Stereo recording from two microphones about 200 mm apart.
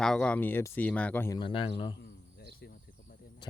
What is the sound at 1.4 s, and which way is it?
Speech, 25° left (ahead or behind).